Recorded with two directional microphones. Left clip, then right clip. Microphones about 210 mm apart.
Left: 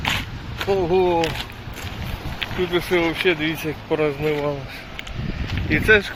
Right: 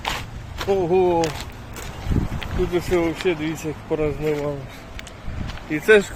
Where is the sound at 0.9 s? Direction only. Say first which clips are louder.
Even; 20° right (ahead or behind).